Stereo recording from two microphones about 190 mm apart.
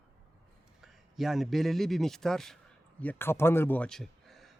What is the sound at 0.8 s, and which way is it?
A man's voice, centre (ahead or behind).